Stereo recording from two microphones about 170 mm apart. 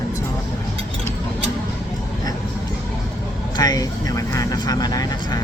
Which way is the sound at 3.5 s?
20° left (ahead or behind).